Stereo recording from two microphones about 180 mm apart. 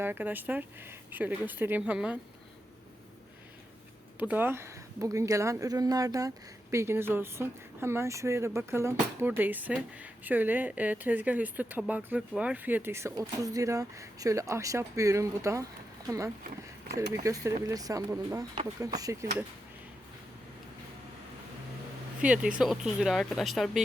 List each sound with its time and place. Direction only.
0.0 s speech: 10° right (ahead or behind)
4.2 s speech: 10° right (ahead or behind)
22.2 s speech: 5° right (ahead or behind)